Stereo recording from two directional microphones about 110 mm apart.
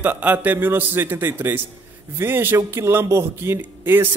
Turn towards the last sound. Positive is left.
turn(degrees=-20)  # may be behind; listen again after turning